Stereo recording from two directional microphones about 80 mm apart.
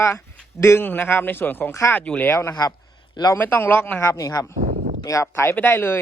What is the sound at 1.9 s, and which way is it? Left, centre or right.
Speech, centre.